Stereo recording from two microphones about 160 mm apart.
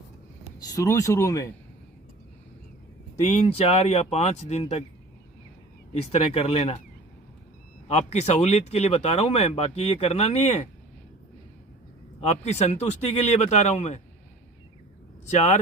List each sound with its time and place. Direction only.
0.6 s speech: 25° left (ahead or behind)
3.2 s speech: 45° left (ahead or behind)
5.9 s speech: 40° left (ahead or behind)
7.9 s speech: 45° left (ahead or behind)
12.2 s speech: 40° left (ahead or behind)
15.3 s speech: 45° left (ahead or behind)